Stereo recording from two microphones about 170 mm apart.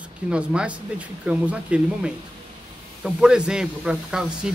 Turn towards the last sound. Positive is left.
turn(degrees=-5)  # may be behind; listen again after turning